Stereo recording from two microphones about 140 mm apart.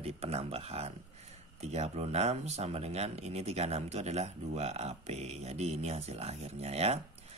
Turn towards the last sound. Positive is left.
turn(degrees=-50)  # may be behind; listen again after turning